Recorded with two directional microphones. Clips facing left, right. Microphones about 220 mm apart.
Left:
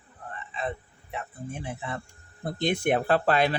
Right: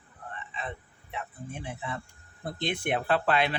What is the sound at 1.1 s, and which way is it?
A man's voice, 45° left (ahead or behind).